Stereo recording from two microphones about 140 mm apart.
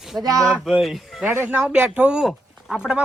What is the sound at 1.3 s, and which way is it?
Speech, 15° right (ahead or behind).